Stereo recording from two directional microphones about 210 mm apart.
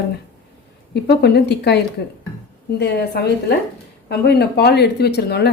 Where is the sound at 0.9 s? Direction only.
50° left (ahead or behind).